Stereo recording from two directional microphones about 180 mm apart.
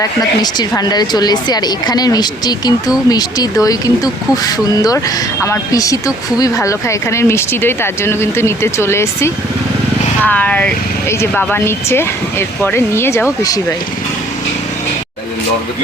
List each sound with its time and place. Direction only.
0.2 s speech: 20° left (ahead or behind)